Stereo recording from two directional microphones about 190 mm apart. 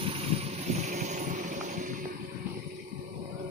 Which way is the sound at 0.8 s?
40° right (ahead or behind).